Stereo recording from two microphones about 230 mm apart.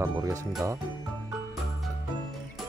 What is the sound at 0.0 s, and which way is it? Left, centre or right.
Speech, centre.